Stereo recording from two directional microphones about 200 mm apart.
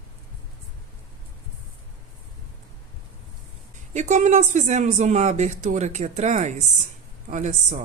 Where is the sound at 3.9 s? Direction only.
35° right (ahead or behind).